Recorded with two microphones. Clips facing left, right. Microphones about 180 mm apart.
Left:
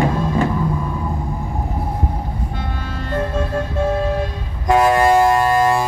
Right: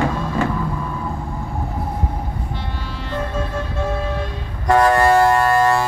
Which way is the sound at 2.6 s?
50° left (ahead or behind).